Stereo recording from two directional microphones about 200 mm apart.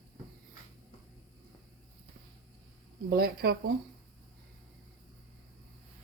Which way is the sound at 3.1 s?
50° right (ahead or behind).